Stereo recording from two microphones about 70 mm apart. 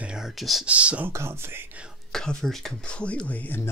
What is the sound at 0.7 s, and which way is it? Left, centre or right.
Speech, centre.